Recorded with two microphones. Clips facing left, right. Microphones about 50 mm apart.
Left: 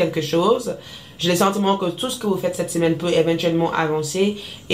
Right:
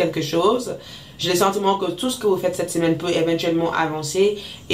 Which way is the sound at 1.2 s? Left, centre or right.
Left.